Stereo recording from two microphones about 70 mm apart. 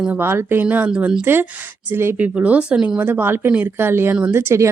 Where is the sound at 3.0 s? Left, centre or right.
Right.